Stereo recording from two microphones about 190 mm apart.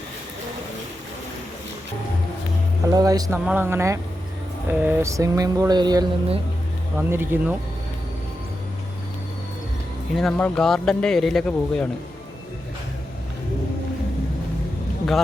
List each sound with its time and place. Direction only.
2.8 s speech: 20° right (ahead or behind)
7.1 s speech: 10° right (ahead or behind)
10.2 s speech: 5° left (ahead or behind)